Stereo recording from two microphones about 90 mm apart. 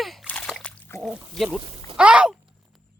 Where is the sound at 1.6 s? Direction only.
70° right (ahead or behind).